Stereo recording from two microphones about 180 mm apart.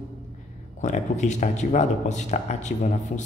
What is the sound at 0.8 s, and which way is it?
Speech, 40° left (ahead or behind).